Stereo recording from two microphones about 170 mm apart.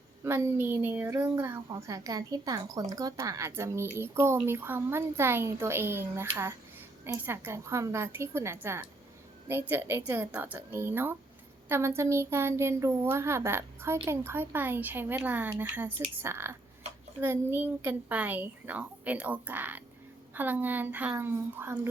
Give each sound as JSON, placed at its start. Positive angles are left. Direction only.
{"t": 0.3, "sound": "a woman's voice", "side_deg": -15}